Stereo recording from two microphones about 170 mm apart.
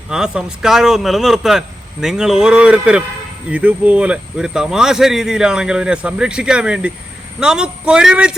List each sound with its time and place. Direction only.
0.1 s speech: 5° right (ahead or behind)